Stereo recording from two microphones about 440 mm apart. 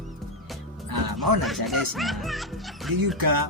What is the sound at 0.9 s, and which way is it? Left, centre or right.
Speech, right.